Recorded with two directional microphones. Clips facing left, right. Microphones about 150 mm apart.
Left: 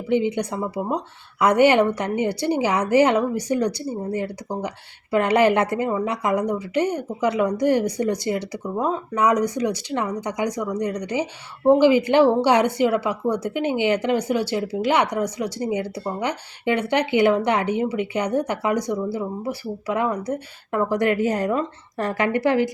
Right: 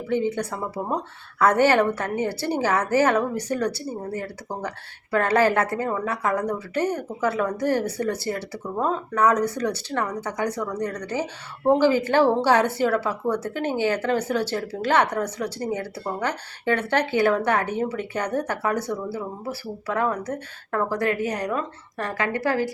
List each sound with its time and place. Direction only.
0.1 s speech: 15° left (ahead or behind)